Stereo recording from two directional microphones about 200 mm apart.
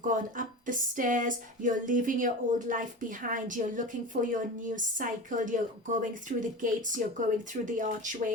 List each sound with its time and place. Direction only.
0.1 s speech: 40° right (ahead or behind)